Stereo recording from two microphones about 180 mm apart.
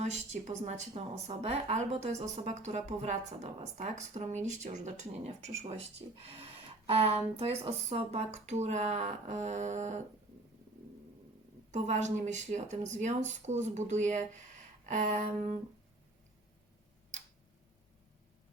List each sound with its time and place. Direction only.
0.0 s speech: 40° right (ahead or behind)
6.8 s speech: 35° right (ahead or behind)
11.7 s speech: 40° right (ahead or behind)
14.8 s a sound: 40° right (ahead or behind)